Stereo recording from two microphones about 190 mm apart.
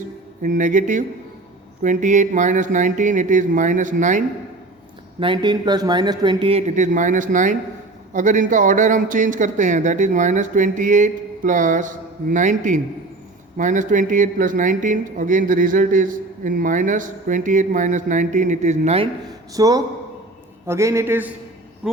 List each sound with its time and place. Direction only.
0.4 s a man's voice: 40° right (ahead or behind)
5.2 s a man's voice: 25° right (ahead or behind)
19.5 s a man's voice: 20° right (ahead or behind)